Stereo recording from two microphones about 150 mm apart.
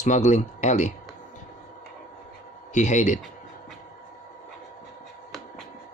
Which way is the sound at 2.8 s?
55° left (ahead or behind).